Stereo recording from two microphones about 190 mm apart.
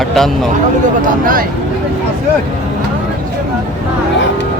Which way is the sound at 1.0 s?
50° right (ahead or behind).